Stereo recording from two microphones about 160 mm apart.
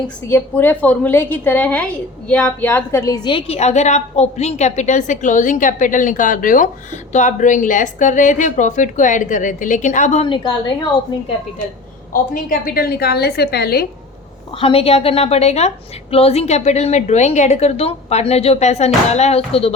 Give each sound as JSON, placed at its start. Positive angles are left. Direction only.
{"t": 0.3, "sound": "a woman's voice", "side_deg": 15}
{"t": 3.3, "sound": "a woman's voice", "side_deg": 40}
{"t": 10.2, "sound": "a woman's voice", "side_deg": 30}
{"t": 12.1, "sound": "a woman's voice", "side_deg": 60}
{"t": 14.6, "sound": "a woman's voice", "side_deg": 35}